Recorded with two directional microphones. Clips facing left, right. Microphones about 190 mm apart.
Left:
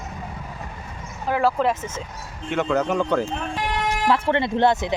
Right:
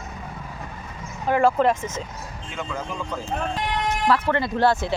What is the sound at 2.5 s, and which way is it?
Speech, 70° left (ahead or behind).